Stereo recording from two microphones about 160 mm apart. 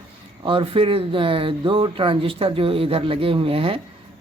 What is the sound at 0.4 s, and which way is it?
Speech, 35° right (ahead or behind).